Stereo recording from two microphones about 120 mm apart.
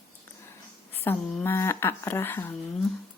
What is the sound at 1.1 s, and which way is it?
Speech, 20° left (ahead or behind).